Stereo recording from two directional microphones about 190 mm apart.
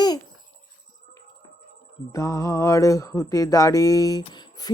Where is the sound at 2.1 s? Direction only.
15° left (ahead or behind).